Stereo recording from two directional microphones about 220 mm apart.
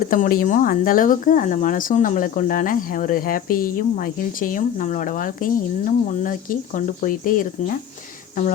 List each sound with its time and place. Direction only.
0.1 s speech: 40° left (ahead or behind)